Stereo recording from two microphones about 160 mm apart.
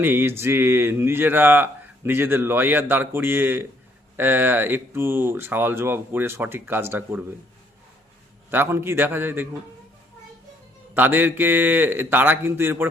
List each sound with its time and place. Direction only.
0.0 s speech: 15° right (ahead or behind)
8.4 s speech: 15° right (ahead or behind)
10.9 s speech: 10° right (ahead or behind)